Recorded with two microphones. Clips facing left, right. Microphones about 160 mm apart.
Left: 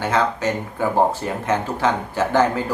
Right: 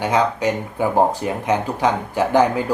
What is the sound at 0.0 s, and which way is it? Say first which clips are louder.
A man's voice: right 2 dB; 15° right (ahead or behind).